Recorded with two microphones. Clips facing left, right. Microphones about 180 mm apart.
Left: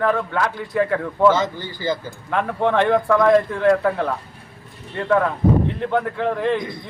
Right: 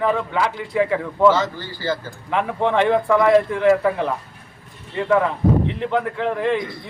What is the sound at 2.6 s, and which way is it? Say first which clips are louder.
Speech: even; 10° right (ahead or behind).